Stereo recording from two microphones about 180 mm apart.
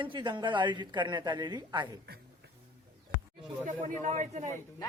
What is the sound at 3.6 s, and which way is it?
Speech, 45° right (ahead or behind).